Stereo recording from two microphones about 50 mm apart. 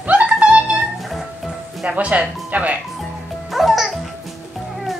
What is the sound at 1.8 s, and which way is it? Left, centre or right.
Speech, right.